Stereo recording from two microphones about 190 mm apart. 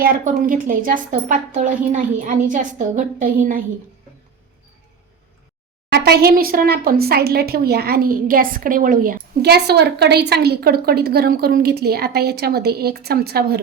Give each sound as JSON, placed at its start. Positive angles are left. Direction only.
{"t": 0.0, "sound": "a woman's voice", "side_deg": -45}
{"t": 5.9, "sound": "a woman's voice", "side_deg": -55}